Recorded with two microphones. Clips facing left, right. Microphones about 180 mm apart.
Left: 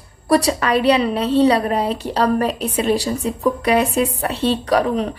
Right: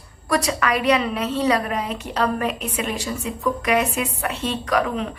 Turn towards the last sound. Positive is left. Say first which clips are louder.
# left 5 dB
turn(degrees=35)  # may be behind; listen again after turning